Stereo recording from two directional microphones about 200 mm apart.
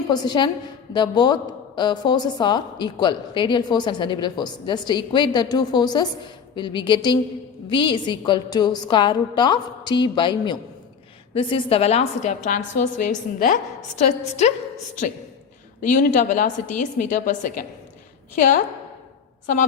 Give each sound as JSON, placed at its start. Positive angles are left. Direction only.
{"t": 0.1, "sound": "a woman's voice", "side_deg": 20}
{"t": 15.8, "sound": "a woman's voice", "side_deg": 40}